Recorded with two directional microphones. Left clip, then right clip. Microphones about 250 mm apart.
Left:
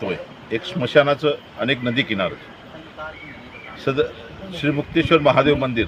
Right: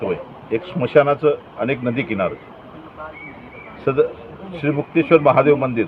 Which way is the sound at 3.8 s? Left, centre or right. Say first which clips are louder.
Right 3 dB; centre.